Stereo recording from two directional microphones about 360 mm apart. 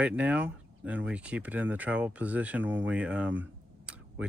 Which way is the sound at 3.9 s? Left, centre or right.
Centre.